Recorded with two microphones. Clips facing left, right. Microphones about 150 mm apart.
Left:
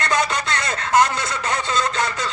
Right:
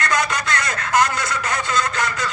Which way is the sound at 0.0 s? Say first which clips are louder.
Even; 30° left (ahead or behind).